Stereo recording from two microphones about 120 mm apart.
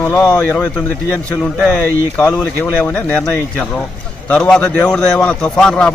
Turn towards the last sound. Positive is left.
turn(degrees=5)  # may be behind; listen again after turning